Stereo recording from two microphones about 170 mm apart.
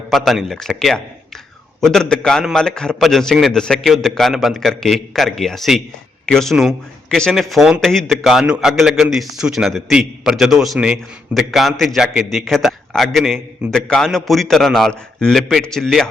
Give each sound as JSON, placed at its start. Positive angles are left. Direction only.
{"t": 0.1, "sound": "a man's voice", "side_deg": 0}